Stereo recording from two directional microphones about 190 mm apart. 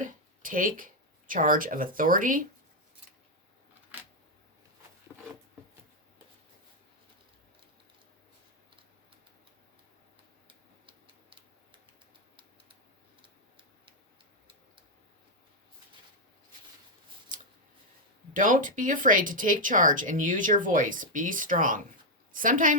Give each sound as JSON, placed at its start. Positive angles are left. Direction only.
{"t": 0.0, "sound": "a sound", "side_deg": -45}
{"t": 1.3, "sound": "speech", "side_deg": -45}
{"t": 10.8, "sound": "tick-tock", "side_deg": -25}
{"t": 18.3, "sound": "a woman's voice", "side_deg": -45}